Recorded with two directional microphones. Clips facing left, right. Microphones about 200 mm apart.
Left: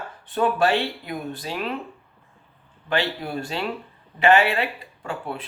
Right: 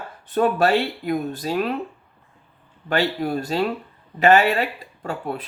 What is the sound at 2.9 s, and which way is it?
Speech, 40° right (ahead or behind).